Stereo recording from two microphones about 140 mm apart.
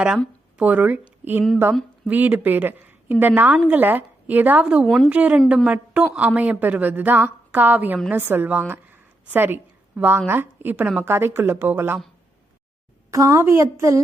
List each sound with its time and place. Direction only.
0.5 s a woman's voice: 10° right (ahead or behind)
13.1 s a woman's voice: 25° right (ahead or behind)